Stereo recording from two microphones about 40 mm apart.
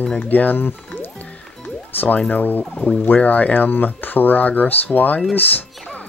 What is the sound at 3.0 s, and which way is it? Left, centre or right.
Speech, left.